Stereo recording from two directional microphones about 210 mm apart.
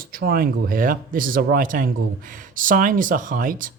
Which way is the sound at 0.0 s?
45° right (ahead or behind).